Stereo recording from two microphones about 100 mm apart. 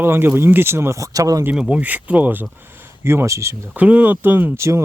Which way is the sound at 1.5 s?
5° right (ahead or behind).